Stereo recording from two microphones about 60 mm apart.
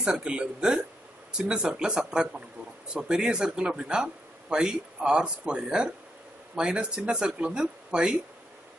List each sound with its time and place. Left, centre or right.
0.0 s speech: centre